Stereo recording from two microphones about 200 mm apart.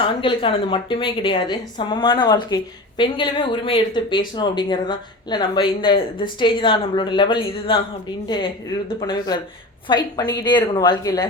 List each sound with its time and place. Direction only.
0.0 s speech: 25° left (ahead or behind)
9.0 s speech: 20° left (ahead or behind)